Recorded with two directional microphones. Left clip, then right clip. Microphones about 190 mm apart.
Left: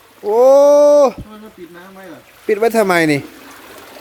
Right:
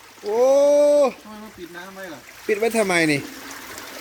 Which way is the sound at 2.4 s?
25° left (ahead or behind).